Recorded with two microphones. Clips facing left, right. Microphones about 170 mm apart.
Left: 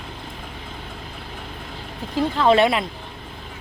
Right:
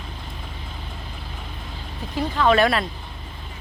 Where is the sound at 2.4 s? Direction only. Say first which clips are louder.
Left 1 dB; 25° left (ahead or behind).